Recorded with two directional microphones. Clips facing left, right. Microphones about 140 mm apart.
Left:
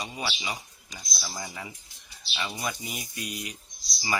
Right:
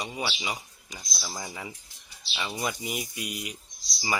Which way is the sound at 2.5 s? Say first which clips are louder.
Right 5 dB; 20° right (ahead or behind).